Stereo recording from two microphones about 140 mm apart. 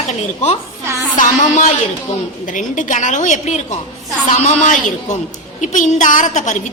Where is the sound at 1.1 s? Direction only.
65° left (ahead or behind).